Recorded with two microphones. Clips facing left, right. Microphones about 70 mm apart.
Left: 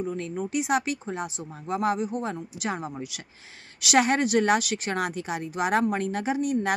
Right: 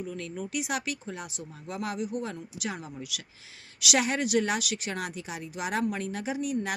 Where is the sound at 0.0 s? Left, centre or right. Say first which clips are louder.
Left 6 dB; left.